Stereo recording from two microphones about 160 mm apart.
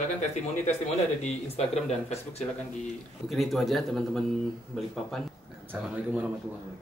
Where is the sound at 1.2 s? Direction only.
40° left (ahead or behind).